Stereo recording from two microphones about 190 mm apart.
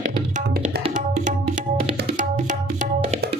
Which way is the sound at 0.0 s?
50° right (ahead or behind).